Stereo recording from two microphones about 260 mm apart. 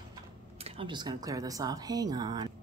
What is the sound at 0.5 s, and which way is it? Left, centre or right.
Speech, right.